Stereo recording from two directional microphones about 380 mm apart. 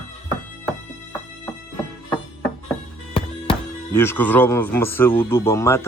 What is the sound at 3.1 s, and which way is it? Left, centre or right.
Speech, centre.